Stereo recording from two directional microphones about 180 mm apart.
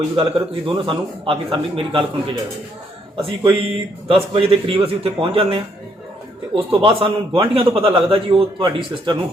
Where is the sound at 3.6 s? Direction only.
30° right (ahead or behind).